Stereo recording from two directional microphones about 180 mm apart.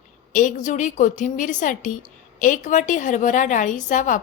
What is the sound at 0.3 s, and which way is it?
A woman's voice, 45° left (ahead or behind).